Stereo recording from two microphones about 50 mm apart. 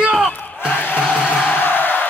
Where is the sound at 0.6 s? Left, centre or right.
Left.